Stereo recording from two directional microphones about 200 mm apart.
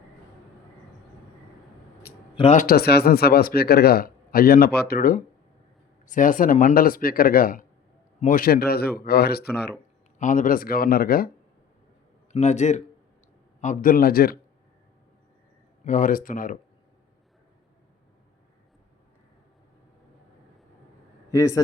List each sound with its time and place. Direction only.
2.3 s speech: 30° left (ahead or behind)
2.6 s speech: 50° left (ahead or behind)
10.2 s speech: 40° left (ahead or behind)
12.3 s speech: 35° left (ahead or behind)
15.8 s speech: 40° left (ahead or behind)
21.3 s a man's voice: 15° left (ahead or behind)